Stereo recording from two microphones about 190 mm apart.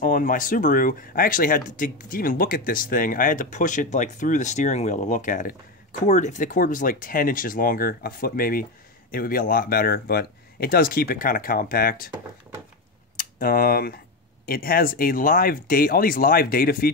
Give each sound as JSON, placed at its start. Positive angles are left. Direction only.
{"t": 0.0, "sound": "speech", "side_deg": 45}
{"t": 13.2, "sound": "speech", "side_deg": 45}